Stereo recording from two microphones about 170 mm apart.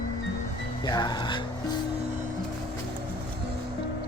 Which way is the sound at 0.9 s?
25° left (ahead or behind).